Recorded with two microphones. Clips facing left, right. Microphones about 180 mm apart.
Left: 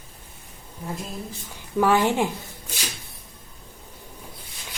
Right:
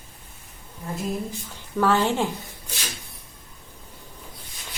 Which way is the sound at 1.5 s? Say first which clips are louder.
Left 1 dB; 15° left (ahead or behind).